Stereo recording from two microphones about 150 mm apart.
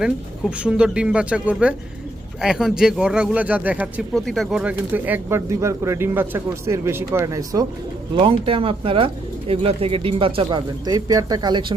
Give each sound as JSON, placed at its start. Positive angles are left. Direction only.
{"t": 0.0, "sound": "speech", "side_deg": -5}
{"t": 4.1, "sound": "speech", "side_deg": 0}
{"t": 8.1, "sound": "speech", "side_deg": -35}